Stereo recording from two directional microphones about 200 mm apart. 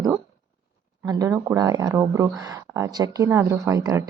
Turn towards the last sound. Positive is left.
turn(degrees=-20)  # may be behind; listen again after turning